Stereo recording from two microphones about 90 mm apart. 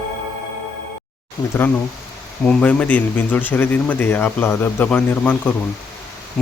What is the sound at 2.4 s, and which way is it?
Speech, 15° left (ahead or behind).